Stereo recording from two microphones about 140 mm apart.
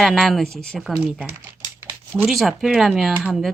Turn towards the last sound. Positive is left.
turn(degrees=0)  # may be behind; listen again after turning